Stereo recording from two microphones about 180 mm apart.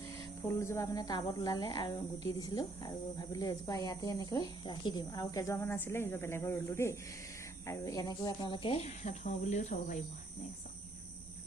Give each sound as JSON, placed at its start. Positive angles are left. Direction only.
{"t": 0.4, "sound": "speech", "side_deg": 15}